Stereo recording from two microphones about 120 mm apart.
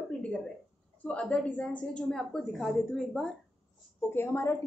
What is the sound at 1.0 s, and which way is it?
A woman's voice, 10° left (ahead or behind).